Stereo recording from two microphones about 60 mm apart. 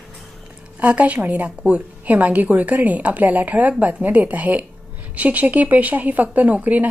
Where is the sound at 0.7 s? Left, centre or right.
Right.